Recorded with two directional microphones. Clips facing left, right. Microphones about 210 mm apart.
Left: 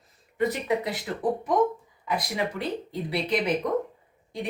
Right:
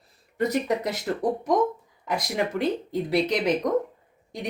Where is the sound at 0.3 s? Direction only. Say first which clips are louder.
Right 1 dB; 40° right (ahead or behind).